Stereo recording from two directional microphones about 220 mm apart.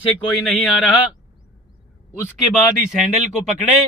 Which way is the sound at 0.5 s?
Centre (ahead or behind).